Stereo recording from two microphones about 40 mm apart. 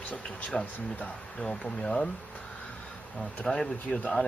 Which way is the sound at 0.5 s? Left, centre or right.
Centre.